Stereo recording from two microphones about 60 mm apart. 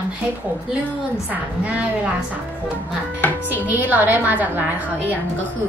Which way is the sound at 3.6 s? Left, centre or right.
Right.